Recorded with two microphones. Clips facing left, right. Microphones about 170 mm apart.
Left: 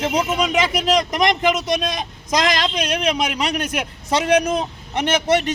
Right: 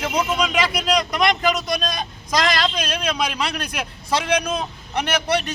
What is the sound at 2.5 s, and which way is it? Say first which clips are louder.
Speech: left 2 dB; 20° left (ahead or behind).